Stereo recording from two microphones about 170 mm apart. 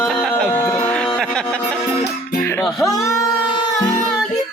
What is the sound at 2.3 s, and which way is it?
Music, 15° left (ahead or behind).